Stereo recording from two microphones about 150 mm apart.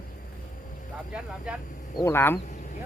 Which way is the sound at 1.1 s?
5° right (ahead or behind).